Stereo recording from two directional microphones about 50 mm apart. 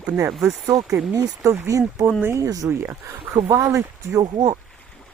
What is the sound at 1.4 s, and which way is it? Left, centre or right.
Speech, right.